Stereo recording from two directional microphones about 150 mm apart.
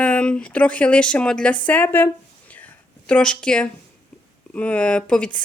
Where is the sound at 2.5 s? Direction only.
10° left (ahead or behind).